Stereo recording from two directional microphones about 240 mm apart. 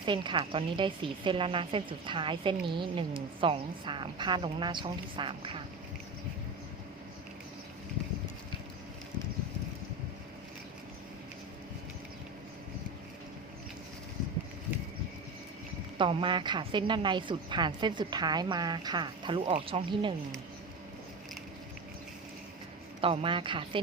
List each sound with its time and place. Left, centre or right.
0.0 s a woman's voice: centre
16.0 s a woman's voice: right
23.0 s a woman's voice: right